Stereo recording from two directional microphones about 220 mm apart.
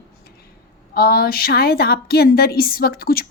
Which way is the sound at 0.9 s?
45° left (ahead or behind).